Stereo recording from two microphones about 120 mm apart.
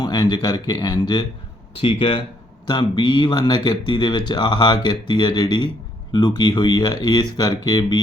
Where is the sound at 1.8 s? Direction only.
50° left (ahead or behind).